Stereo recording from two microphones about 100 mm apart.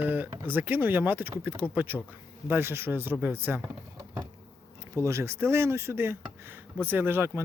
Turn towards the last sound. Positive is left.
turn(degrees=-25)  # may be behind; listen again after turning